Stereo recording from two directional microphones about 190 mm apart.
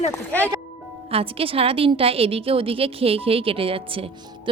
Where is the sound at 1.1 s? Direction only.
30° right (ahead or behind).